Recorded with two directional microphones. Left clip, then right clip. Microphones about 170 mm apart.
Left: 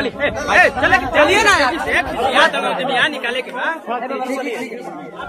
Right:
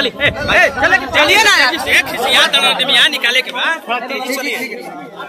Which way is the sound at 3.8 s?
30° left (ahead or behind).